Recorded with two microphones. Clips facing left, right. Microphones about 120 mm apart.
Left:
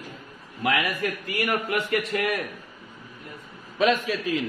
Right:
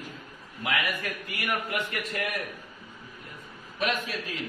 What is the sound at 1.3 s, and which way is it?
A man's voice, 90° left.